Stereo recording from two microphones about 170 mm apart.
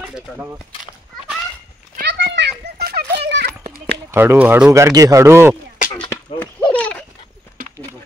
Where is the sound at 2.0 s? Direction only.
85° right.